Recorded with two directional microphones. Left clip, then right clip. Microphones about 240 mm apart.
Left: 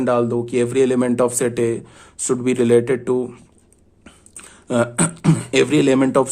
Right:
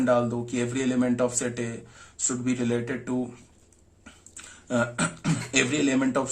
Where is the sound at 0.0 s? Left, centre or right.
Left.